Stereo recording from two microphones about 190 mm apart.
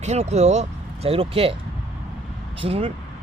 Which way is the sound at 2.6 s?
30° right (ahead or behind).